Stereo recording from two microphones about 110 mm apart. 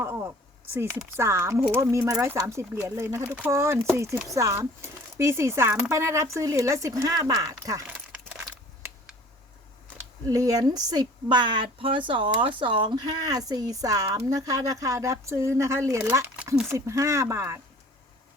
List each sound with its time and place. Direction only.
0.0 s speech: 20° right (ahead or behind)
10.2 s a woman's voice: 30° right (ahead or behind)
16.1 s a sound: 25° right (ahead or behind)
16.6 s speech: 25° right (ahead or behind)